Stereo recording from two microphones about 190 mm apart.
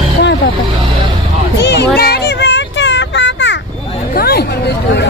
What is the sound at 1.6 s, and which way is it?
Speech, 65° left (ahead or behind).